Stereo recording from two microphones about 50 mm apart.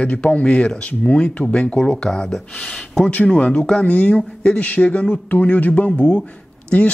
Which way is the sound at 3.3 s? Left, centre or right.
Left.